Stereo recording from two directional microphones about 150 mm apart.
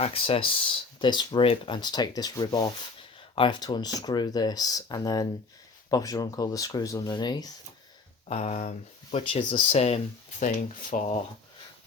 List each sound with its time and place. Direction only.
0.0 s speech: 40° left (ahead or behind)
8.3 s speech: 45° left (ahead or behind)
9.1 s speech: 35° left (ahead or behind)
10.4 s speech: 65° left (ahead or behind)